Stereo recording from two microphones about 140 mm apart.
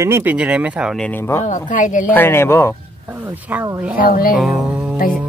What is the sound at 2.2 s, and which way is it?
Speech, 15° left (ahead or behind).